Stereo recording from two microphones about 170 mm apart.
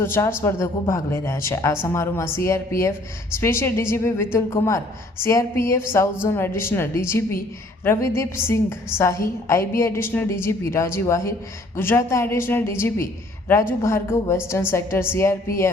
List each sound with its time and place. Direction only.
0.0 s speech: 15° left (ahead or behind)